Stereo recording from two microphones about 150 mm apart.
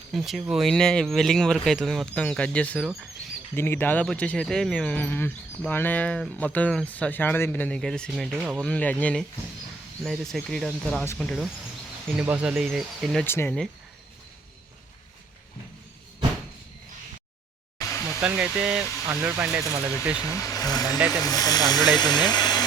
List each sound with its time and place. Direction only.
0.1 s speech: centre (ahead or behind)
8.4 s speech: 10° right (ahead or behind)
8.6 s speech: 10° left (ahead or behind)
12.1 s speech: 10° right (ahead or behind)
13.2 s speech: 15° left (ahead or behind)
18.2 s speech: 10° right (ahead or behind)
20.1 s speech: 25° left (ahead or behind)